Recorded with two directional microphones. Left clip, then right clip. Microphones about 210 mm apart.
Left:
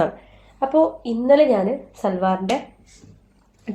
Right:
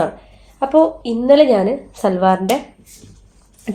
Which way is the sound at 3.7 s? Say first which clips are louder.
Right 6 dB; 45° right (ahead or behind).